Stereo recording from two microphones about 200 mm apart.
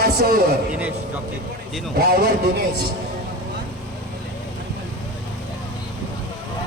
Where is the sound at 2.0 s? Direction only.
50° right (ahead or behind).